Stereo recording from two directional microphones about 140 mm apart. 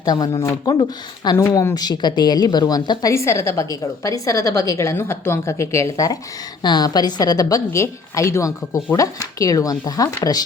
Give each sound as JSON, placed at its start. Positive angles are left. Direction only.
{"t": 0.0, "sound": "a woman's voice", "side_deg": 25}